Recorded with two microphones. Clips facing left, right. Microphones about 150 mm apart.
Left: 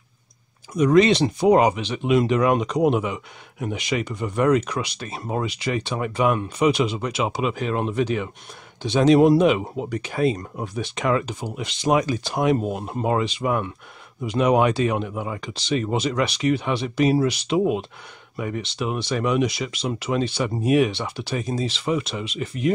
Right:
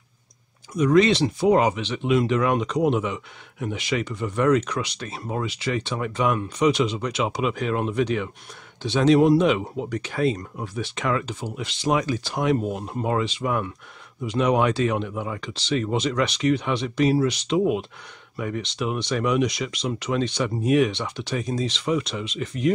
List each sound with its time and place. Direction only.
0.7 s speech: 20° left (ahead or behind); by 8.3 s 5° left (ahead or behind)
8.8 s speech: 15° left (ahead or behind)